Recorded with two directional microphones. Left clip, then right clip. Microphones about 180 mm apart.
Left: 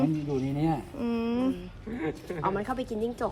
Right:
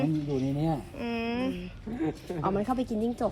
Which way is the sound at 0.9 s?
15° left (ahead or behind).